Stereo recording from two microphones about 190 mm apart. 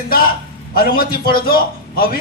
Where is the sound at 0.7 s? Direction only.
50° left (ahead or behind).